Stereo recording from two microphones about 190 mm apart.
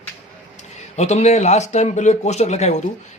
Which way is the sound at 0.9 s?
35° left (ahead or behind).